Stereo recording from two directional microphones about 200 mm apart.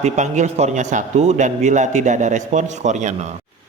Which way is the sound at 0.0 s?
35° right (ahead or behind).